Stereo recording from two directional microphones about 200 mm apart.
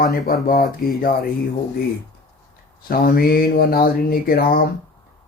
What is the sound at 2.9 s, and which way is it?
Speech, 45° left (ahead or behind).